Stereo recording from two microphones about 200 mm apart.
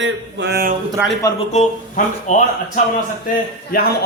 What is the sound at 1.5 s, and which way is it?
Speech, 35° left (ahead or behind).